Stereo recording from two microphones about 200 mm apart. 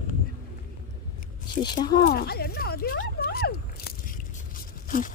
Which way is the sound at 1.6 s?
20° left (ahead or behind).